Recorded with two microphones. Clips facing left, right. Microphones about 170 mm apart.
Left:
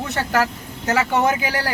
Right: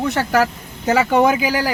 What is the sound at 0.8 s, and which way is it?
Speech, 15° right (ahead or behind).